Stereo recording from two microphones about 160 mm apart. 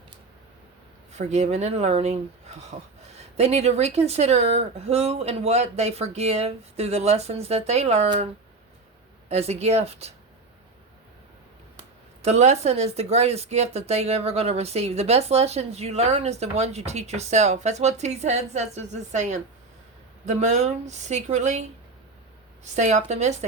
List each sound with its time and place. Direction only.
1.1 s speech: 45° right (ahead or behind)
9.3 s speech: 40° right (ahead or behind)
12.2 s speech: 45° right (ahead or behind)
22.6 s speech: 45° right (ahead or behind)